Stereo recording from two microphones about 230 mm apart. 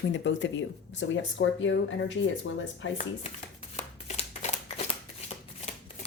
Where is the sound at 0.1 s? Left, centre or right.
Left.